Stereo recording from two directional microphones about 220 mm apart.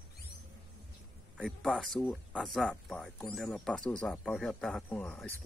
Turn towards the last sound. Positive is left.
turn(degrees=5)  # may be behind; listen again after turning